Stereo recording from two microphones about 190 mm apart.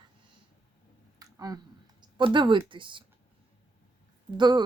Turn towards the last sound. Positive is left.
turn(degrees=-25)  # may be behind; listen again after turning